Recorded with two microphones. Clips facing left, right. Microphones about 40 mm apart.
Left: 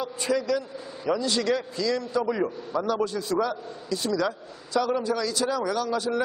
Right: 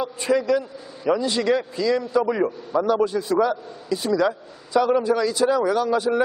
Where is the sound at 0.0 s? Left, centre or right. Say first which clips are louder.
Right 5 dB; centre.